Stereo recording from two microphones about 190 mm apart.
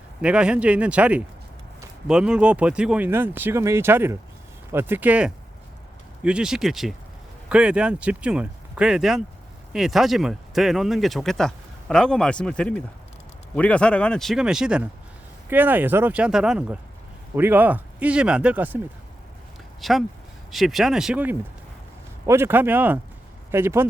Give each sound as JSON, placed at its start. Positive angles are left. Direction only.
{"t": 0.2, "sound": "speech", "side_deg": -5}
{"t": 19.8, "sound": "speech", "side_deg": 0}